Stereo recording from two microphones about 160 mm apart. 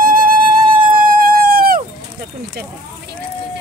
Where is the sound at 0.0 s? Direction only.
60° right (ahead or behind).